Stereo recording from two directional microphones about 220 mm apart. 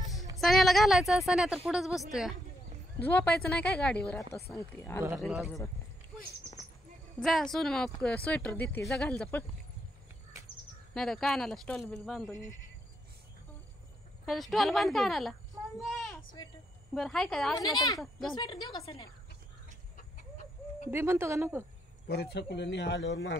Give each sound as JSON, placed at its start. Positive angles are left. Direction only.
{"t": 0.4, "sound": "a woman's voice", "side_deg": 0}
{"t": 5.2, "sound": "a woman's voice", "side_deg": 0}
{"t": 7.2, "sound": "a woman's voice", "side_deg": 0}
{"t": 11.0, "sound": "a woman's voice", "side_deg": 0}
{"t": 14.2, "sound": "a woman's voice", "side_deg": 0}
{"t": 15.8, "sound": "a sound", "side_deg": 0}
{"t": 16.9, "sound": "a woman's voice", "side_deg": 0}
{"t": 17.6, "sound": "a woman's voice", "side_deg": 15}
{"t": 20.0, "sound": "chicken", "side_deg": 35}
{"t": 20.9, "sound": "speech", "side_deg": -10}
{"t": 22.0, "sound": "speech", "side_deg": 45}